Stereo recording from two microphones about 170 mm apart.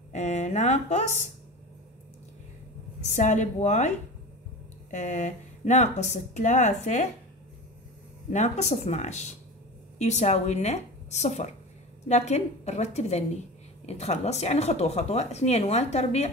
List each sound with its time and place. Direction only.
0.1 s speech: 40° left (ahead or behind)
3.0 s speech: 45° left (ahead or behind)
4.9 s speech: 45° left (ahead or behind)
8.3 s speech: 45° left (ahead or behind)